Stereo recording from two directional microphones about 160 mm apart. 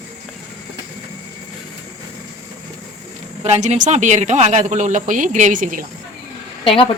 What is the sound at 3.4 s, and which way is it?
Speech, 45° right (ahead or behind).